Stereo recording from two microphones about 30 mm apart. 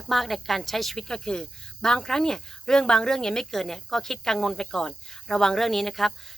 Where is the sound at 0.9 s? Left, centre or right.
Left.